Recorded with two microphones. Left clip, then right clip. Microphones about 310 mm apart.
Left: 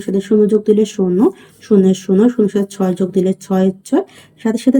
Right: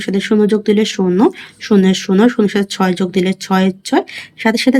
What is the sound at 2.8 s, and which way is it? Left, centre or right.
Speech, right.